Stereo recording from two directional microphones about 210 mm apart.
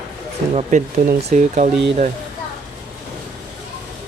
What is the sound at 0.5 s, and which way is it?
Speech, 35° right (ahead or behind).